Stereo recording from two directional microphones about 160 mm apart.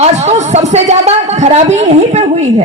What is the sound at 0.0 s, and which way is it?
A man's voice, 45° right (ahead or behind).